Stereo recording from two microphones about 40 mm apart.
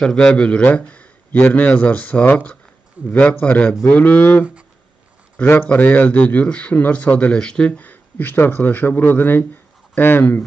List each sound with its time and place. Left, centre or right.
0.0 s speech: centre
0.3 s a man's voice: left
5.4 s a man's voice: left
5.7 s a man's voice: left
7.3 s speech: left
7.7 s a man's voice: left